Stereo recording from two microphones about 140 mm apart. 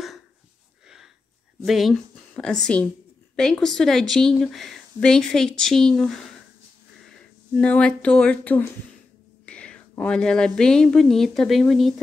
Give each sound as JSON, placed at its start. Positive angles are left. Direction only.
{"t": 1.6, "sound": "a woman's voice", "side_deg": 0}
{"t": 7.5, "sound": "speech", "side_deg": 10}